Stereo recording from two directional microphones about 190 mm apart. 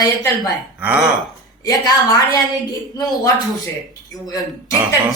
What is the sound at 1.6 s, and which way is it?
A woman's voice, 20° left (ahead or behind).